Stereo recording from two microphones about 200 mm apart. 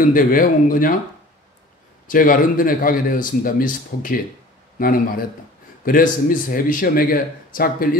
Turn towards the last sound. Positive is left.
turn(degrees=45)  # may be behind; listen again after turning